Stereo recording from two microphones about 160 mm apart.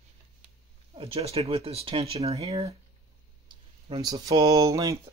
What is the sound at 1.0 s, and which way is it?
Speech, 40° right (ahead or behind).